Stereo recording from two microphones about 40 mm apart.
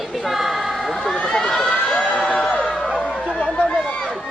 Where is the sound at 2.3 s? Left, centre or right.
Left.